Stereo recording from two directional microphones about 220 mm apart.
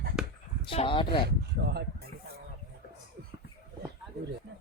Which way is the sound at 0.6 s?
25° left (ahead or behind).